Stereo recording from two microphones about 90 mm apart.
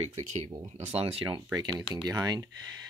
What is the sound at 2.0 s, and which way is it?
Speech, 45° right (ahead or behind).